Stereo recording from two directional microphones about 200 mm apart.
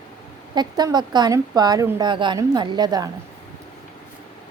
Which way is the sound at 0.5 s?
20° right (ahead or behind).